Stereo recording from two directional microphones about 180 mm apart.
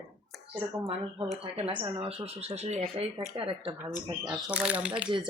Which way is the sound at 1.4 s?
30° right (ahead or behind).